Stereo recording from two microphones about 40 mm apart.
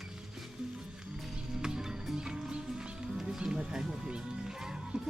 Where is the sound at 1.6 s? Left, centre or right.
Centre.